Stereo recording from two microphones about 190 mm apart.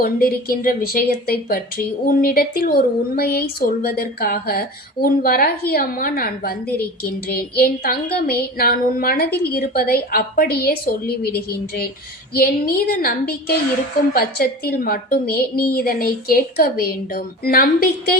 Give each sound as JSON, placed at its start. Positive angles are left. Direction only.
{"t": 0.0, "sound": "a woman's voice", "side_deg": 50}